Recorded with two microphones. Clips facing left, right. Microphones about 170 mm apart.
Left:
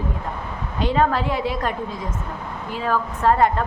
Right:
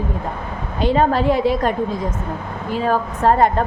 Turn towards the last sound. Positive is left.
turn(degrees=-35)  # may be behind; listen again after turning